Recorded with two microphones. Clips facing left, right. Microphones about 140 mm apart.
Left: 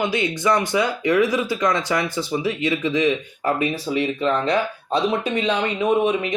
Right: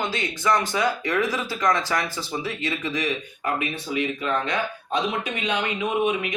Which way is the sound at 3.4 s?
30° left (ahead or behind).